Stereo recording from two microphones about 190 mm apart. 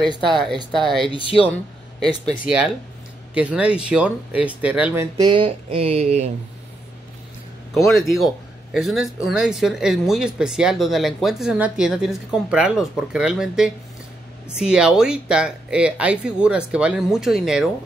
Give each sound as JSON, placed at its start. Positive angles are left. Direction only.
{"t": 0.3, "sound": "speech", "side_deg": 0}
{"t": 1.1, "sound": "speech", "side_deg": 30}
{"t": 2.2, "sound": "speech", "side_deg": -5}
{"t": 7.9, "sound": "speech", "side_deg": 0}